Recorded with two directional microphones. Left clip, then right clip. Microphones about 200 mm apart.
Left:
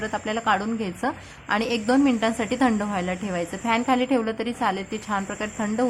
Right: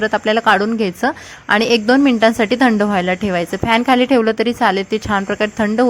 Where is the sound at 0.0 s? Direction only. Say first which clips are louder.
Right 11 dB; 30° right (ahead or behind).